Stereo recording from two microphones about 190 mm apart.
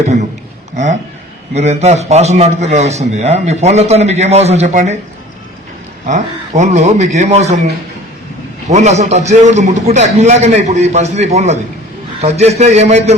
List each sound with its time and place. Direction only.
0.0 s a man's voice: 35° right (ahead or behind)
1.5 s a man's voice: 35° right (ahead or behind)
6.1 s a man's voice: 40° right (ahead or behind)
8.7 s a man's voice: 35° right (ahead or behind)